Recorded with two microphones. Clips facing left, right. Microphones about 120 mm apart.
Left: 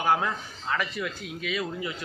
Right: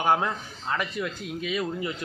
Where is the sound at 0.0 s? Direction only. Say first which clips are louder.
Right 1 dB; 20° right (ahead or behind).